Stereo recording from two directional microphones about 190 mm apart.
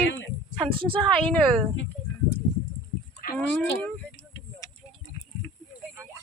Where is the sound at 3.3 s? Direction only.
5° left (ahead or behind).